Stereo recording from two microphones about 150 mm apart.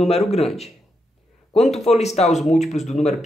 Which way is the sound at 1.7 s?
45° left (ahead or behind).